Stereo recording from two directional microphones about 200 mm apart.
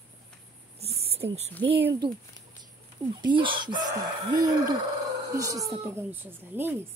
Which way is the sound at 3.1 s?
25° right (ahead or behind).